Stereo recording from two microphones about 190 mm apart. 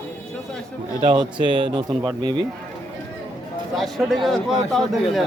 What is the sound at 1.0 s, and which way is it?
Speech, 25° right (ahead or behind).